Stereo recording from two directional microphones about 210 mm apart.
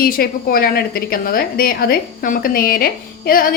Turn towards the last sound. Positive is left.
turn(degrees=45)  # may be behind; listen again after turning